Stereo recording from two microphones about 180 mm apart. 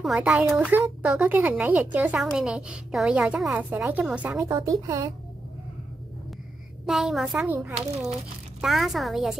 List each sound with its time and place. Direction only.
0.0 s speech: centre (ahead or behind)
4.4 s speech: 20° right (ahead or behind)
6.9 s speech: centre (ahead or behind)